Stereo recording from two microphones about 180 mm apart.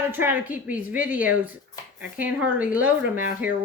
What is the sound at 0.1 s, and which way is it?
Speech, 10° right (ahead or behind).